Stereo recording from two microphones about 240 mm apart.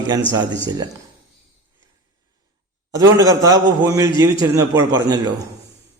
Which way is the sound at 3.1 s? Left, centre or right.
Centre.